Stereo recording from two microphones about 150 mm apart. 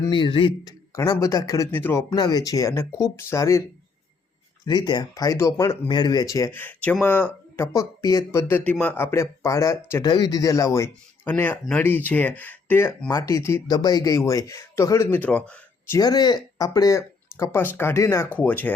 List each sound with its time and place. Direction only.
0.0 s speech: 35° left (ahead or behind)
4.6 s speech: 30° left (ahead or behind)
6.6 s speech: 10° left (ahead or behind)
16.0 s speech: 25° left (ahead or behind); by 18.7 s 10° left (ahead or behind)